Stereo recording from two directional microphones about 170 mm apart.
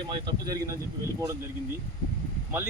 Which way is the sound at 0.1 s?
25° right (ahead or behind).